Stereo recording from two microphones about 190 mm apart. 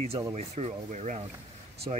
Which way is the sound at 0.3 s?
35° right (ahead or behind).